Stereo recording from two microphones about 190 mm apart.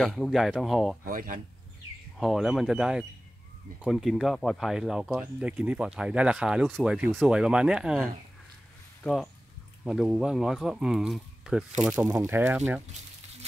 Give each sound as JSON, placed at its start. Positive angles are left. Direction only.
{"t": 0.0, "sound": "speech", "side_deg": 0}
{"t": 1.0, "sound": "speech", "side_deg": -45}
{"t": 2.1, "sound": "speech", "side_deg": 0}